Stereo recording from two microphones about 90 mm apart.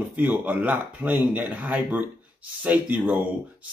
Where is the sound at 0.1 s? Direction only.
20° right (ahead or behind).